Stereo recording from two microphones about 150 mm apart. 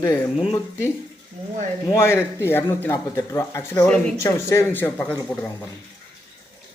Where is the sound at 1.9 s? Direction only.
20° left (ahead or behind).